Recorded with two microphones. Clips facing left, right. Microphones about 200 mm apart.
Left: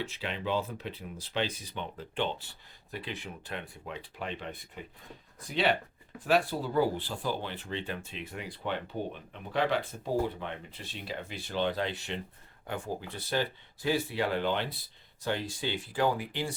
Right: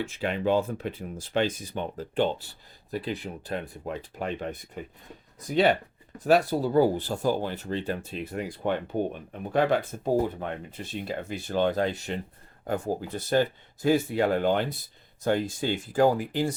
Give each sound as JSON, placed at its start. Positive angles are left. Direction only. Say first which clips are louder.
{"t": 0.0, "sound": "speech", "louder": "right 8 dB", "side_deg": -45}